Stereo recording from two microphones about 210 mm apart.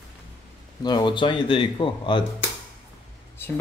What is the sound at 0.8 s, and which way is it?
Speech, 20° left (ahead or behind).